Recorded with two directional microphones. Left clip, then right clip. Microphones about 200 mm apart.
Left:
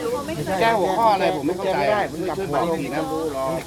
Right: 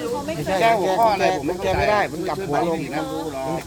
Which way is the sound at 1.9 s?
40° right (ahead or behind).